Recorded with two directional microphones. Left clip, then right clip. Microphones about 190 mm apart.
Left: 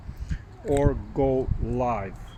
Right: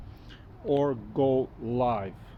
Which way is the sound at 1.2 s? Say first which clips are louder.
Left 1 dB; 10° right (ahead or behind).